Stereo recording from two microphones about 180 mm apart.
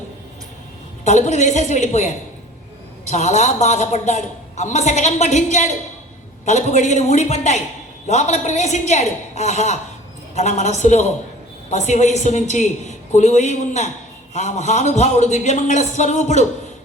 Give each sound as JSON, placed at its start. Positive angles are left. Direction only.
{"t": 1.0, "sound": "a woman's voice", "side_deg": 40}